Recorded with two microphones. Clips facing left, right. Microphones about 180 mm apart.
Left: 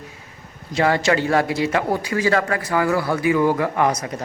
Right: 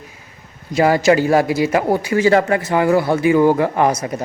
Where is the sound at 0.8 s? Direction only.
30° right (ahead or behind).